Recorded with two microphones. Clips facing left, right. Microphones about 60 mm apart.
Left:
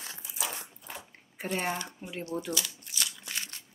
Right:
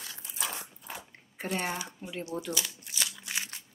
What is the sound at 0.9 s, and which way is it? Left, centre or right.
Squish, centre.